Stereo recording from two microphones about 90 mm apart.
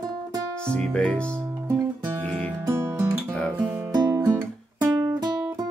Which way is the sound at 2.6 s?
30° right (ahead or behind).